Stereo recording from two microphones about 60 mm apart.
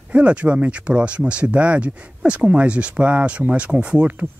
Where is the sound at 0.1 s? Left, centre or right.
Right.